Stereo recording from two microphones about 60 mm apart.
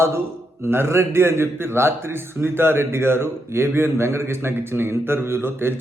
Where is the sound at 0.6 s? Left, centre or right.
Right.